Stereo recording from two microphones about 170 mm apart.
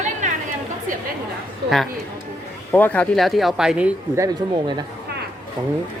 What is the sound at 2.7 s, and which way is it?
Speech, 10° left (ahead or behind).